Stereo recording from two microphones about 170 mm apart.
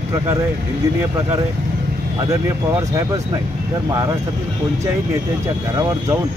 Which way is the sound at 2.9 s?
20° right (ahead or behind).